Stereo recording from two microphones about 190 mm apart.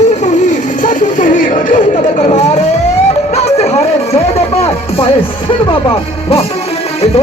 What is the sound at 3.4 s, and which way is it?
Music, 35° left (ahead or behind).